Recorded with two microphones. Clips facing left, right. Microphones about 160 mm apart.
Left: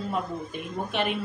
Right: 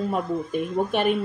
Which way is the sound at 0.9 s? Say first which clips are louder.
Right 3 dB; 45° right (ahead or behind).